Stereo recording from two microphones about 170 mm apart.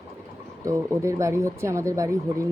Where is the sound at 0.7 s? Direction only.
15° right (ahead or behind).